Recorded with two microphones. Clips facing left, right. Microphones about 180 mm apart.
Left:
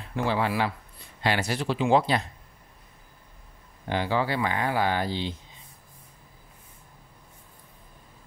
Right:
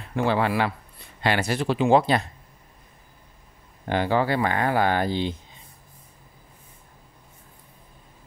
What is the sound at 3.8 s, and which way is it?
Speech, 50° right (ahead or behind).